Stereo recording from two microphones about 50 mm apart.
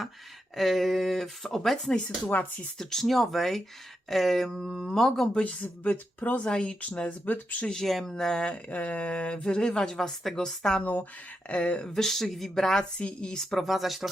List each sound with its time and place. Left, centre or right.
0.5 s speech: centre
2.0 s speech: left
2.7 s speech: centre
5.3 s speech: left
7.7 s speech: centre; by 11.9 s left
11.9 s speech: centre
13.0 s speech: centre